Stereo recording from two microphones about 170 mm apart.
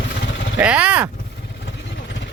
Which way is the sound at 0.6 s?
10° right (ahead or behind).